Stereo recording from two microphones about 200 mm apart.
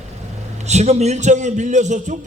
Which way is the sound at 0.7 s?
35° right (ahead or behind).